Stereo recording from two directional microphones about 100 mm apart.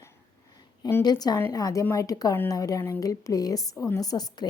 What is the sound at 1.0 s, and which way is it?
Speech, 40° left (ahead or behind).